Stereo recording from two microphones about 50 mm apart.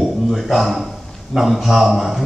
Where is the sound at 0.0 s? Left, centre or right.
Centre.